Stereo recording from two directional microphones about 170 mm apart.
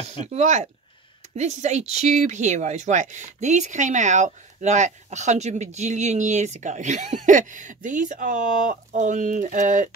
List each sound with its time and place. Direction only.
0.3 s speech: 45° right (ahead or behind)